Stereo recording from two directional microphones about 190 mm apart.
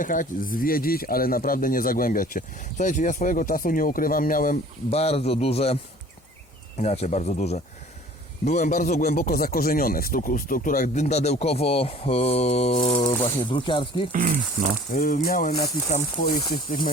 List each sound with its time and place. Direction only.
0.0 s speech: 45° left (ahead or behind)
4.9 s speech: 30° left (ahead or behind)
14.1 s speech: 40° right (ahead or behind)
14.9 s speech: 45° left (ahead or behind)